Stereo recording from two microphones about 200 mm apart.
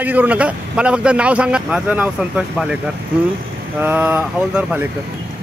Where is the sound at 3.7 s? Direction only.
10° right (ahead or behind).